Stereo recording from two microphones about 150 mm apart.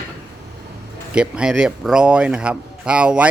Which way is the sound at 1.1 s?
5° right (ahead or behind).